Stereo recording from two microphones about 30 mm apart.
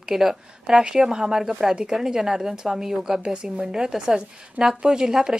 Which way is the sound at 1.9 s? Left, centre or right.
Centre.